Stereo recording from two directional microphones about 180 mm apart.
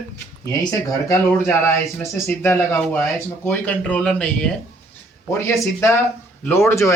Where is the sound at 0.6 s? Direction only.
20° left (ahead or behind).